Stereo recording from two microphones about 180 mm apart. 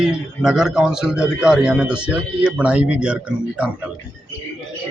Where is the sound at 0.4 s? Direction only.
5° right (ahead or behind).